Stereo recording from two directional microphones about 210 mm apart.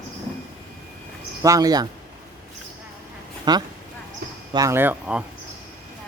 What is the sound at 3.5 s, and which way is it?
Speech, 20° right (ahead or behind).